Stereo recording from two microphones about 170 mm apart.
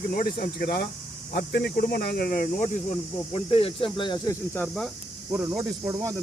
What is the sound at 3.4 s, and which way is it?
Speech, 35° left (ahead or behind).